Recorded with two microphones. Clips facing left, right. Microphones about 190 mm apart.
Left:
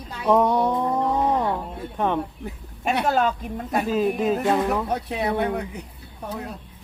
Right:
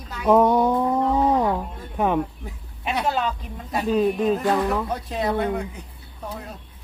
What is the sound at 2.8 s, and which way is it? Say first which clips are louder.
Speech: left 3 dB; 55° left (ahead or behind).